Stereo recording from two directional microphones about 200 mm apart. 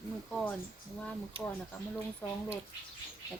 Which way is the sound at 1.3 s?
25° right (ahead or behind).